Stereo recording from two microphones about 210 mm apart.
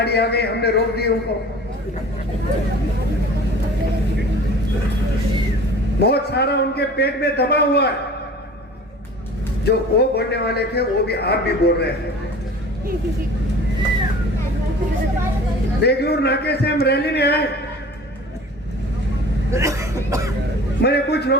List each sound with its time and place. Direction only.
0.0 s a man's voice: 50° left (ahead or behind)
6.0 s a man's voice: 50° left (ahead or behind)
9.6 s a man's voice: 50° left (ahead or behind)
15.8 s a man's voice: 50° left (ahead or behind)
19.5 s speech: 15° right (ahead or behind)
20.8 s a man's voice: 50° left (ahead or behind)